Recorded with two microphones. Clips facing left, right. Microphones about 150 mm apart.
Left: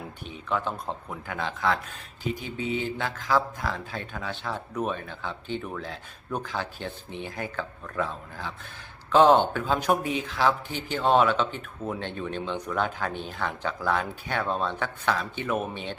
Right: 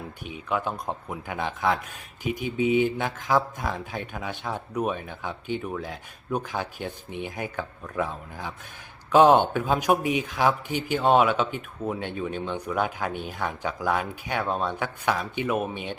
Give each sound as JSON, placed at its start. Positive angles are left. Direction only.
{"t": 0.3, "sound": "speech", "side_deg": -10}